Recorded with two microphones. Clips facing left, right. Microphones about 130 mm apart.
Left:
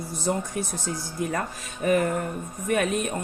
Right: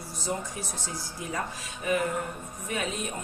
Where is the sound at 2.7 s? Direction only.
60° left (ahead or behind).